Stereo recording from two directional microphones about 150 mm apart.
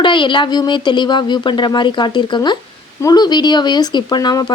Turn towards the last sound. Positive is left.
turn(degrees=30)  # may be behind; listen again after turning